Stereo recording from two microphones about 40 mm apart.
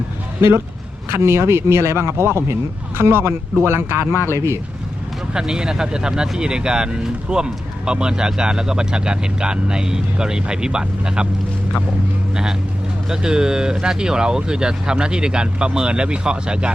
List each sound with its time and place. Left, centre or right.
1.1 s speech: right
3.6 s speech: right
4.1 s speech: right
5.3 s speech: centre
12.3 s speech: centre